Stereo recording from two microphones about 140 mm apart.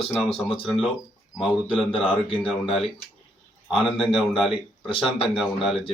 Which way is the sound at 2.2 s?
40° left (ahead or behind).